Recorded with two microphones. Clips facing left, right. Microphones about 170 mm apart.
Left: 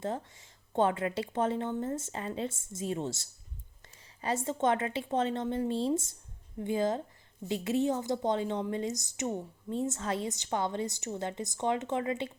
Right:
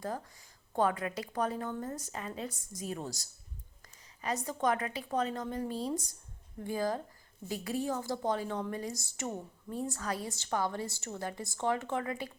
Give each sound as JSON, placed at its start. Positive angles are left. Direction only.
{"t": 0.0, "sound": "a woman's voice", "side_deg": 25}